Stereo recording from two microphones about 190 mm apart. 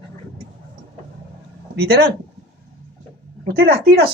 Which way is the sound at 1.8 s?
55° right (ahead or behind).